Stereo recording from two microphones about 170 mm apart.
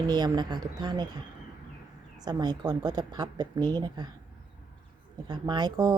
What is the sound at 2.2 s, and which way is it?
Speech, 25° right (ahead or behind).